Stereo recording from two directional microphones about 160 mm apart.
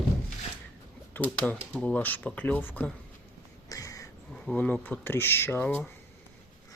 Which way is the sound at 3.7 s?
20° left (ahead or behind).